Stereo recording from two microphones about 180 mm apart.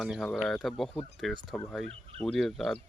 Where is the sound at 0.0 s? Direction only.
Centre (ahead or behind).